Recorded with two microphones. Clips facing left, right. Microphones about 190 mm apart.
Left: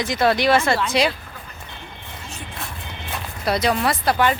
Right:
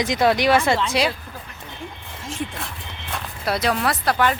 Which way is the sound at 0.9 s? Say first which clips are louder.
Left 1 dB; 5° right (ahead or behind).